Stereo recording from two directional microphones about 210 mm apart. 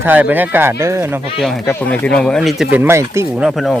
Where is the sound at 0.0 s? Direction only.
10° right (ahead or behind).